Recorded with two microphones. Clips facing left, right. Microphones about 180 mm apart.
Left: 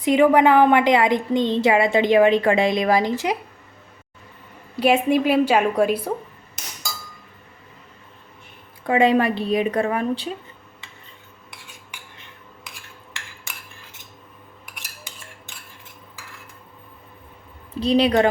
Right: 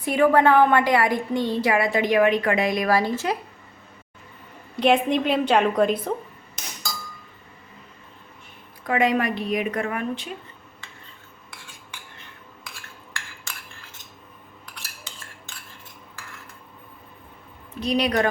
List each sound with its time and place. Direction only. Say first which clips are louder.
0.0 s a woman's voice: left 3 dB; 20° left (ahead or behind)
4.8 s a woman's voice: left 2 dB; 5° left (ahead or behind)
6.6 s chink: right 1 dB; 5° left (ahead or behind)
8.9 s a woman's voice: left 4 dB; 30° left (ahead or behind)
14.8 s cutlery: left 1 dB; 15° left (ahead or behind)
17.7 s a woman's voice: left 5 dB; 30° left (ahead or behind)